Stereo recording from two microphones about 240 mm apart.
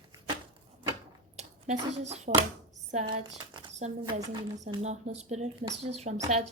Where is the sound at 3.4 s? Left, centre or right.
Centre.